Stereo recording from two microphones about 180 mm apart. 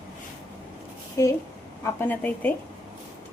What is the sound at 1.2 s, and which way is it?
A woman's voice, 15° left (ahead or behind).